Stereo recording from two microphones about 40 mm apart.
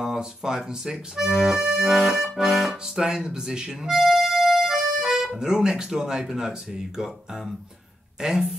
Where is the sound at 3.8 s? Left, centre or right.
Centre.